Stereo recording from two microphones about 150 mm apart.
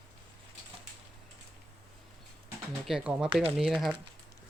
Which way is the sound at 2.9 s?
5° right (ahead or behind).